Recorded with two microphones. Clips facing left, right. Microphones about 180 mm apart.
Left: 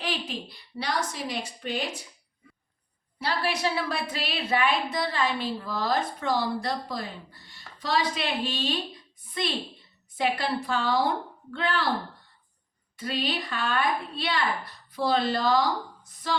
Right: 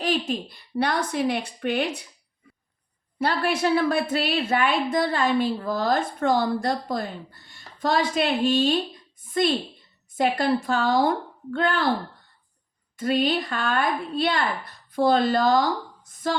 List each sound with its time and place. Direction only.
0.0 s speech: 45° right (ahead or behind); by 2.0 s 60° right (ahead or behind)
3.2 s a woman's voice: 50° right (ahead or behind)
13.0 s a woman's voice: 45° right (ahead or behind)